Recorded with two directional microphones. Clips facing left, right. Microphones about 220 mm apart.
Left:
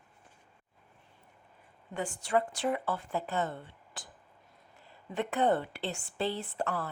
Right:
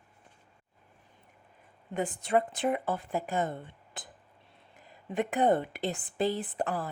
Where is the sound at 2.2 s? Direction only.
20° right (ahead or behind).